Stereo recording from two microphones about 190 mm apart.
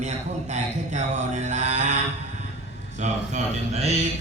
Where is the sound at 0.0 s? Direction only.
40° right (ahead or behind).